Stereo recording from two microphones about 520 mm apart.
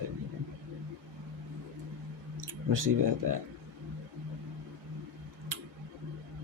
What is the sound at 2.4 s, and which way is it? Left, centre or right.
Speech, right.